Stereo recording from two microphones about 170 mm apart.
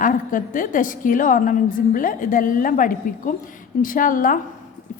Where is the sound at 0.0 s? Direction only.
50° left (ahead or behind).